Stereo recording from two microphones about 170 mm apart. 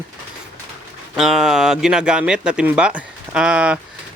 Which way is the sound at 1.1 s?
Centre (ahead or behind).